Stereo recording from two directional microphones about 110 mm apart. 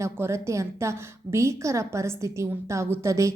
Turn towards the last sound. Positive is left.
turn(degrees=-25)  # may be behind; listen again after turning